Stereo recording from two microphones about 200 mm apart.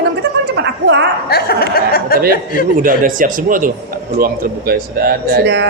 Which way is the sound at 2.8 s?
45° right (ahead or behind).